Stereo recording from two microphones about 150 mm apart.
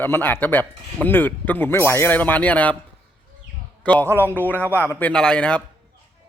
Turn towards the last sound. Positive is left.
turn(degrees=5)  # may be behind; listen again after turning